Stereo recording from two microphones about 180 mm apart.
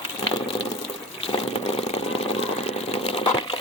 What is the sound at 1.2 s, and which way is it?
Vehicle, 35° left (ahead or behind).